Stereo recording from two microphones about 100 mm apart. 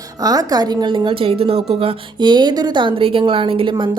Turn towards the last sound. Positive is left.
turn(degrees=-65)  # may be behind; listen again after turning